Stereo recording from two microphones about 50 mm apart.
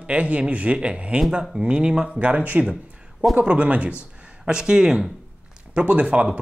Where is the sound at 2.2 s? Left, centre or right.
Right.